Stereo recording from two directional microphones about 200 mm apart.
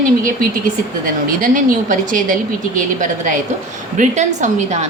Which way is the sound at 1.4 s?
40° right (ahead or behind).